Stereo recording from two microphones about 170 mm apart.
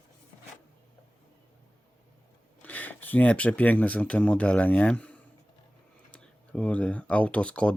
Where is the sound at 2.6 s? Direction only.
10° left (ahead or behind).